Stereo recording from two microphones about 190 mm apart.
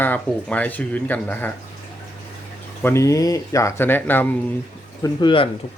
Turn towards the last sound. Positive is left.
turn(degrees=25)  # may be behind; listen again after turning